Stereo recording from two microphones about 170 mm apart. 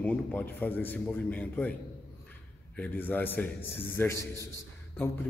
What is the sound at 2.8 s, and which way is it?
A man's voice, 10° left (ahead or behind).